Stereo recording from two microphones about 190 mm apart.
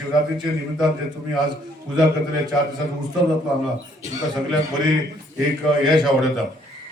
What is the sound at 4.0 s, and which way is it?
Speech, 20° right (ahead or behind).